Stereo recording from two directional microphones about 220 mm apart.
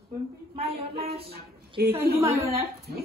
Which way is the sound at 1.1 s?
25° right (ahead or behind).